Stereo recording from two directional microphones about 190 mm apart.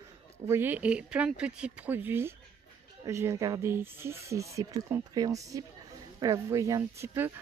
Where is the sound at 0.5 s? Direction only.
10° right (ahead or behind).